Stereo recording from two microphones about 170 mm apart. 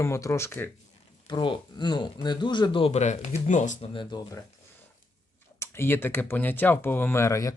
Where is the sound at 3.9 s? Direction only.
25° left (ahead or behind).